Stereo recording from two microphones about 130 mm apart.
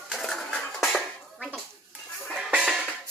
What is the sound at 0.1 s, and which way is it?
Dishes, centre (ahead or behind).